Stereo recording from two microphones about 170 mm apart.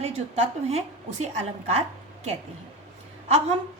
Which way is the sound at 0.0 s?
35° right (ahead or behind).